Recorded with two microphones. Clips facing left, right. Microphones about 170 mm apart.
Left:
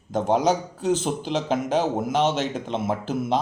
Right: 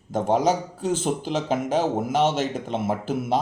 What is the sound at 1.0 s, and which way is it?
A man's voice, 5° right (ahead or behind).